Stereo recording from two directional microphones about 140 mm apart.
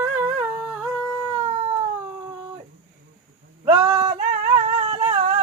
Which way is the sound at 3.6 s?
15° right (ahead or behind).